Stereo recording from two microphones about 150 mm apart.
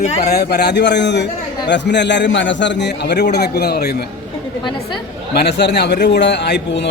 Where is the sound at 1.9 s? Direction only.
90° left.